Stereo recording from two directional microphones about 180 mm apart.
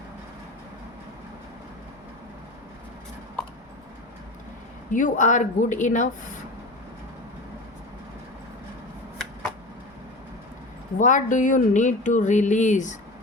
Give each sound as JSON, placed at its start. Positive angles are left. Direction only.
{"t": 4.9, "sound": "speech", "side_deg": 45}
{"t": 10.9, "sound": "speech", "side_deg": 45}